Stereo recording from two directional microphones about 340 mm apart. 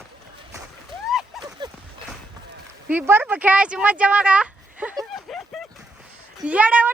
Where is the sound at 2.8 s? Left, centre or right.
Centre.